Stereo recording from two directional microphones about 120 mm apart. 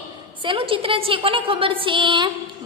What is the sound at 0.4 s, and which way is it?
A woman's voice, 45° right (ahead or behind).